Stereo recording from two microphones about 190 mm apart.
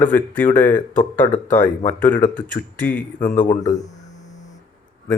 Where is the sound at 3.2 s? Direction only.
40° left (ahead or behind).